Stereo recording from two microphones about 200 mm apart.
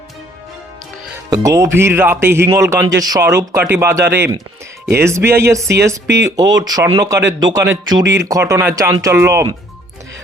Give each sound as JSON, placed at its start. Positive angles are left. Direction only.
{"t": 1.3, "sound": "speech", "side_deg": -15}